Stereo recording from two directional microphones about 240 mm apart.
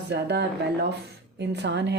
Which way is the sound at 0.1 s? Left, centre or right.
Right.